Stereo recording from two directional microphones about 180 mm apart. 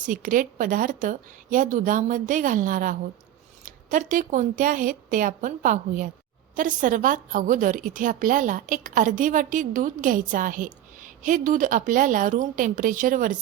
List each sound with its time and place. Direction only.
0.0 s a woman's voice: 45° right (ahead or behind)